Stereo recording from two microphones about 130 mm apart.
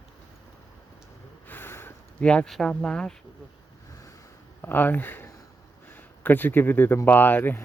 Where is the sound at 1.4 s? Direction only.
15° left (ahead or behind).